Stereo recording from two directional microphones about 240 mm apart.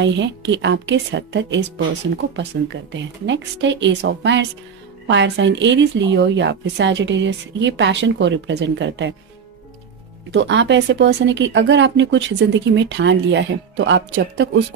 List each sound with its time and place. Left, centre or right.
0.0 s speech: right
10.3 s speech: right